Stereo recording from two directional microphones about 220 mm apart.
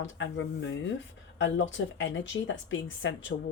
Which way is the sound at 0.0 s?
55° left (ahead or behind).